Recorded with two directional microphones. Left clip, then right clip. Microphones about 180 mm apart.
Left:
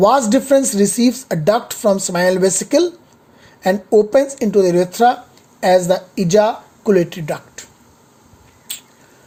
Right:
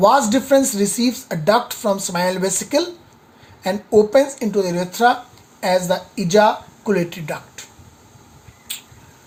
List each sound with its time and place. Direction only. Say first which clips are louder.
0.0 s speech: left 1 dB; 50° left (ahead or behind)
3.9 s speech: even; 55° left (ahead or behind)
8.7 s finger snapping: even; 45° left (ahead or behind)